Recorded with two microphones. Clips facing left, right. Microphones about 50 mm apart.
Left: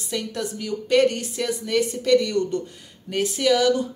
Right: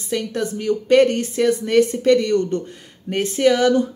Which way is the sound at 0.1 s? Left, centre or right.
Right.